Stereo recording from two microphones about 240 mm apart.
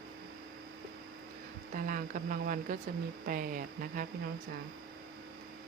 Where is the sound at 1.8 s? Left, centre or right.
Right.